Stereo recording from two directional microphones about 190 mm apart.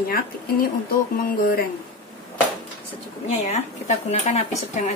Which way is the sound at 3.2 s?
35° left (ahead or behind).